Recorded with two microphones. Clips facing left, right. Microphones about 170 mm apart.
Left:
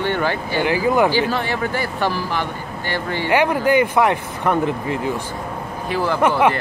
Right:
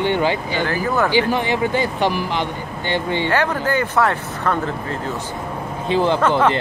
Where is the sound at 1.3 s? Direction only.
15° right (ahead or behind).